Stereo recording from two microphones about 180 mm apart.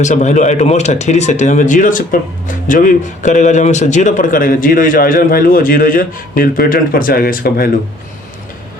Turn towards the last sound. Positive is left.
turn(degrees=55)  # may be behind; listen again after turning